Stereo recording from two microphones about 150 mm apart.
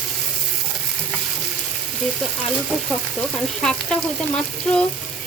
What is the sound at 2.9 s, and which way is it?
Speech, centre (ahead or behind).